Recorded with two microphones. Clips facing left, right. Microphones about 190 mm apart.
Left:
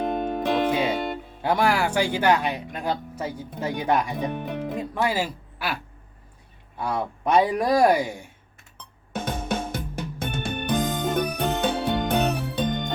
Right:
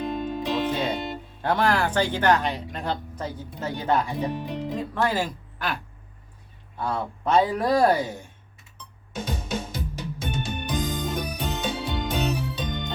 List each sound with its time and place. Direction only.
0.0 s music: 55° left (ahead or behind)
0.7 s music: 10° left (ahead or behind)
0.9 s music: 55° left (ahead or behind)
1.4 s speech: 10° left (ahead or behind)
4.3 s speech: 55° left (ahead or behind)
4.9 s speech: 10° left (ahead or behind)
9.1 s music: 55° left (ahead or behind)